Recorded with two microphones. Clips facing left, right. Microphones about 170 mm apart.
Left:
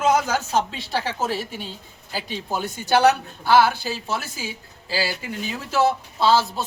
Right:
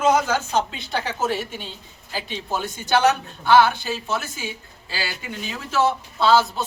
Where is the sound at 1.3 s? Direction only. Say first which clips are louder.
Right 1 dB; 35° left (ahead or behind).